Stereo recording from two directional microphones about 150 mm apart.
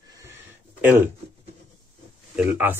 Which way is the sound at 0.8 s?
10° right (ahead or behind).